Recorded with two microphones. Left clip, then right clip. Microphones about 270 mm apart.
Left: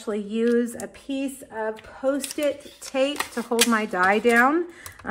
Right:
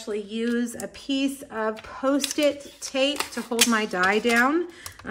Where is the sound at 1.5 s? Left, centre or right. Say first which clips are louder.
Right 1 dB; right.